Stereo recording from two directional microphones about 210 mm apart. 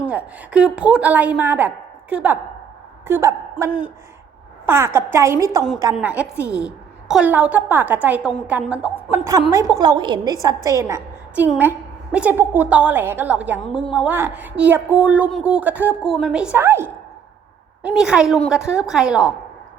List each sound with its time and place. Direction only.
0.1 s a woman's voice: 5° right (ahead or behind)